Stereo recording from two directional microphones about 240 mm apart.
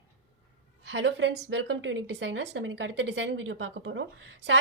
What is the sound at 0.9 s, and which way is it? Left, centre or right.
A woman's voice, right.